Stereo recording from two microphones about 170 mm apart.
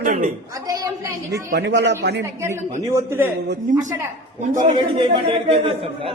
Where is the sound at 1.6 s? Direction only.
90° right.